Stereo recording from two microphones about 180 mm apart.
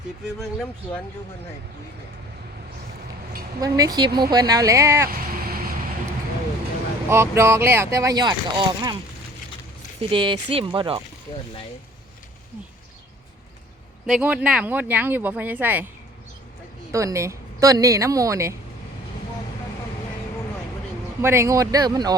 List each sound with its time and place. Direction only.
0.3 s speech: centre (ahead or behind)
3.6 s speech: 20° right (ahead or behind)
5.4 s vehicle: 55° right (ahead or behind)
7.1 s speech: 15° right (ahead or behind)
10.0 s speech: 30° right (ahead or behind)
14.1 s speech: 10° right (ahead or behind)
16.9 s speech: 15° right (ahead or behind)
21.2 s speech: 15° right (ahead or behind)